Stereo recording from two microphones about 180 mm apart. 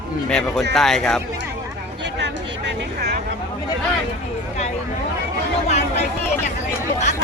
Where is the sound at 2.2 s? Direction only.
65° right (ahead or behind).